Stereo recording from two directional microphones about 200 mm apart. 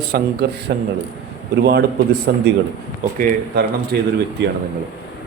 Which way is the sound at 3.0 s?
45° right (ahead or behind).